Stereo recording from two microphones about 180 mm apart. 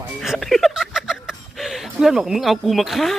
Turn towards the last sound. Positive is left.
turn(degrees=0)  # may be behind; listen again after turning